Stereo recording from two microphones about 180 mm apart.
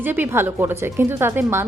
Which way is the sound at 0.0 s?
10° right (ahead or behind).